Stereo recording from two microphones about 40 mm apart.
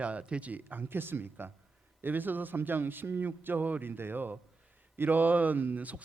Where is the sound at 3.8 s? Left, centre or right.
Right.